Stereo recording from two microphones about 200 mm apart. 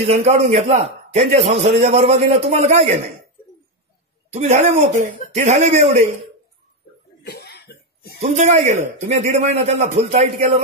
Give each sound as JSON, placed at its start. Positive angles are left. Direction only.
{"t": 0.0, "sound": "a man's voice", "side_deg": -30}
{"t": 4.3, "sound": "a man's voice", "side_deg": -35}
{"t": 7.2, "sound": "cough", "side_deg": 55}
{"t": 8.2, "sound": "a man's voice", "side_deg": -35}